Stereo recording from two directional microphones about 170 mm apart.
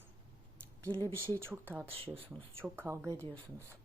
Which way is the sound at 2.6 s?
10° right (ahead or behind).